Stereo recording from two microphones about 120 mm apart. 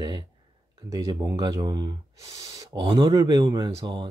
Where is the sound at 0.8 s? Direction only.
30° right (ahead or behind).